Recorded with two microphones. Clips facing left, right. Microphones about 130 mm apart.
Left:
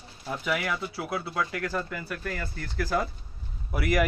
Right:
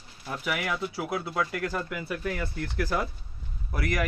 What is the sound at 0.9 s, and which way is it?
Speech, 20° right (ahead or behind).